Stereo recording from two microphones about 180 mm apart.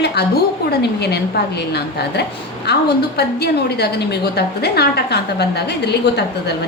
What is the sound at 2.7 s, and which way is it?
A woman's voice, 65° left (ahead or behind).